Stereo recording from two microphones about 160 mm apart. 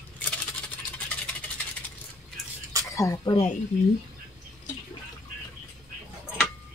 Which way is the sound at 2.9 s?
20° left (ahead or behind).